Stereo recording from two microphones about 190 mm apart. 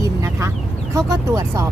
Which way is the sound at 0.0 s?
15° right (ahead or behind).